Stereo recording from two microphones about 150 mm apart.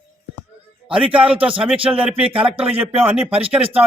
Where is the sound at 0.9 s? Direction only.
5° right (ahead or behind).